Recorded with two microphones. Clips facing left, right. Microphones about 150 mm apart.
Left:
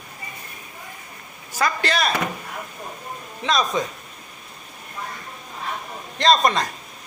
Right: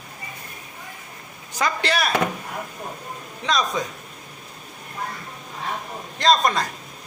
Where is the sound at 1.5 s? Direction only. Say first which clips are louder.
Left 1 dB; 15° right (ahead or behind).